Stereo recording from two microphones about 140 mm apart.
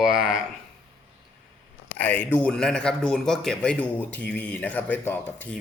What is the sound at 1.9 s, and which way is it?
Speech, 10° left (ahead or behind).